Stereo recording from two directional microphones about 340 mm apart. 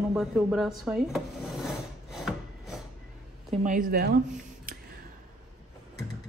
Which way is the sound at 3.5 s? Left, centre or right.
Right.